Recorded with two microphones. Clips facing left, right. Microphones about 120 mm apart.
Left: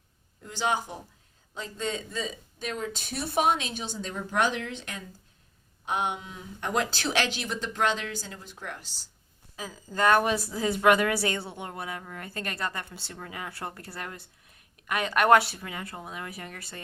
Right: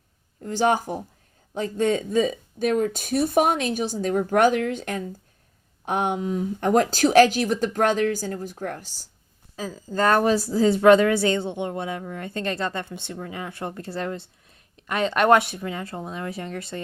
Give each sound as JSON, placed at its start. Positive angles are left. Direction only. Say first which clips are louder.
{"t": 0.4, "sound": "speech", "louder": "right 8 dB", "side_deg": -50}
{"t": 9.6, "sound": "a woman's voice", "louder": "right 4 dB", "side_deg": -30}